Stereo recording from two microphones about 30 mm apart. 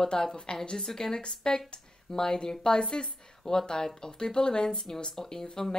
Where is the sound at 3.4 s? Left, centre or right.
Centre.